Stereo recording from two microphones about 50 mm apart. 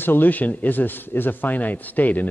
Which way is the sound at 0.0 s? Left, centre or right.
Left.